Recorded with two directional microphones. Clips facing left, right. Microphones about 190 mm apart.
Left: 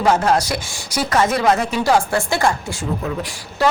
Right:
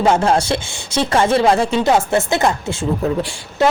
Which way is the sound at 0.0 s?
25° right (ahead or behind).